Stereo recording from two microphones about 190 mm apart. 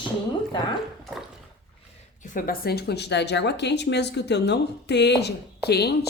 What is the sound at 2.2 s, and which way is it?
A woman's voice, 45° left (ahead or behind).